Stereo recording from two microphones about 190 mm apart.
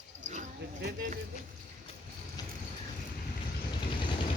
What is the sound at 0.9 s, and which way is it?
Speech, 50° right (ahead or behind).